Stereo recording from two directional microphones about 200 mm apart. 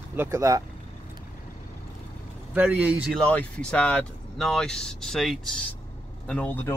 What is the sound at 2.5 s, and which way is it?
Speech, 10° right (ahead or behind).